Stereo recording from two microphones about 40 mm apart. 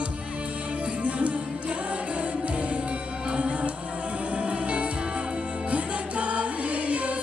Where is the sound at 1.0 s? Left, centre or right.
Right.